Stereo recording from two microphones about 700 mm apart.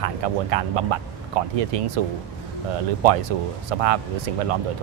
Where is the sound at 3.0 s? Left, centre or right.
Right.